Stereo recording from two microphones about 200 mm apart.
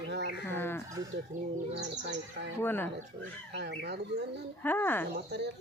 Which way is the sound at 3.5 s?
60° right (ahead or behind).